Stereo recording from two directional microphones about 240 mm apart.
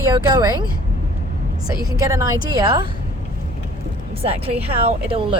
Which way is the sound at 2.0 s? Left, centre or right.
Centre.